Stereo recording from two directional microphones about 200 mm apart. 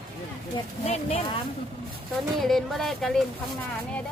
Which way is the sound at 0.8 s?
30° left (ahead or behind).